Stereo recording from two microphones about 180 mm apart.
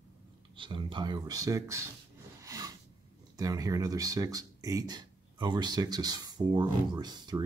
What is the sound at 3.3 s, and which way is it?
Speech, 20° right (ahead or behind).